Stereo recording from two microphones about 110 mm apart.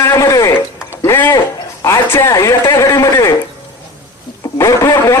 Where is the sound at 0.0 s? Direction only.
25° left (ahead or behind).